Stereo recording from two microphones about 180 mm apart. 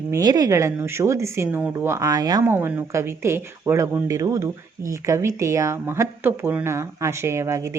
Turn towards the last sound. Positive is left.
turn(degrees=-15)  # may be behind; listen again after turning